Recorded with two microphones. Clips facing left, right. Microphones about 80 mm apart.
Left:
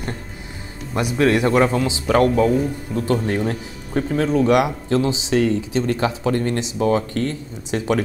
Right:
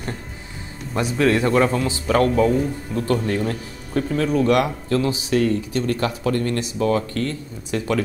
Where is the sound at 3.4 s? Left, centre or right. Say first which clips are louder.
Left 1 dB; centre.